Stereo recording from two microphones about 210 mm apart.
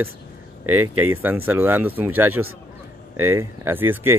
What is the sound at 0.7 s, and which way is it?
Speech, 90° right.